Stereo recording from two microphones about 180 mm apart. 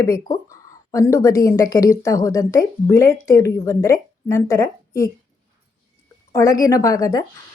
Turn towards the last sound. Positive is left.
turn(degrees=20)  # may be behind; listen again after turning